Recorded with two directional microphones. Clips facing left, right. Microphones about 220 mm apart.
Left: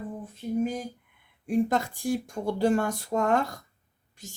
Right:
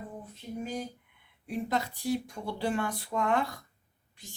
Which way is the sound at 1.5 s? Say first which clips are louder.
Left 7 dB; 45° left (ahead or behind).